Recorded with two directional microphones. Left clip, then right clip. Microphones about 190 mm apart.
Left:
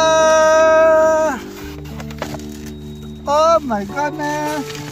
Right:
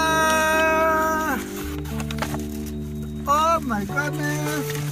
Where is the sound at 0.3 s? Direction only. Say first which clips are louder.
Left 8 dB; 55° left (ahead or behind).